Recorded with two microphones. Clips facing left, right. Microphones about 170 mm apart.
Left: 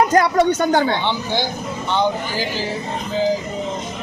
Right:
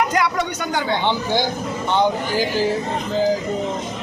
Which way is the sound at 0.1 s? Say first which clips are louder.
Left 6 dB; 50° left (ahead or behind).